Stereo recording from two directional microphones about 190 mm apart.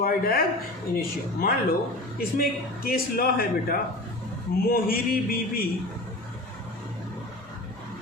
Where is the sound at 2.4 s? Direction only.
50° left (ahead or behind).